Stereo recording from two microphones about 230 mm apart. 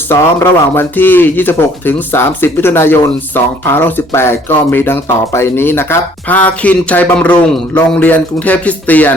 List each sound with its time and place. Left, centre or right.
0.1 s speech: centre